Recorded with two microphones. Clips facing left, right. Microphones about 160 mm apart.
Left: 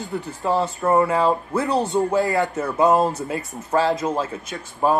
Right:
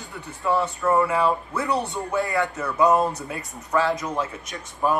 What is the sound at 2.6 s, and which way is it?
Speech, 25° left (ahead or behind).